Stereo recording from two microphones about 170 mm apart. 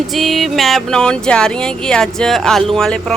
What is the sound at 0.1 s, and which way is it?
A woman's voice, centre (ahead or behind).